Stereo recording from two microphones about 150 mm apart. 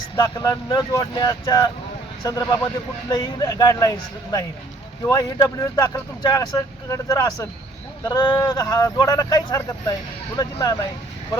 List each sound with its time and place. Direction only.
0.2 s speech: 25° left (ahead or behind)